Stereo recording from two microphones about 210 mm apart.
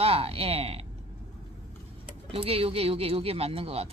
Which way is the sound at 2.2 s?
25° right (ahead or behind).